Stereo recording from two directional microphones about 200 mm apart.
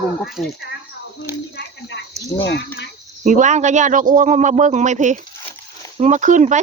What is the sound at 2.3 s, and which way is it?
Speech, 15° left (ahead or behind).